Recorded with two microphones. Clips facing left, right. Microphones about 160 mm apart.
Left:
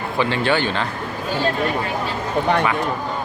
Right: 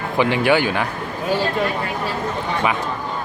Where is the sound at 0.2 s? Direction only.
15° right (ahead or behind).